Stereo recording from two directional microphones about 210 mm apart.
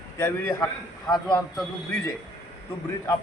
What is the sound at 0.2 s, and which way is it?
Speech, 15° left (ahead or behind).